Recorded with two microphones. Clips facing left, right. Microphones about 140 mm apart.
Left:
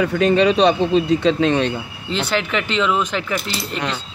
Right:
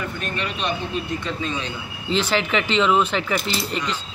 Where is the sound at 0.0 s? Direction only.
85° left.